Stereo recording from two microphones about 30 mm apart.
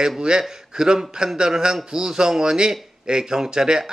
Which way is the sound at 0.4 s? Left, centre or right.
Centre.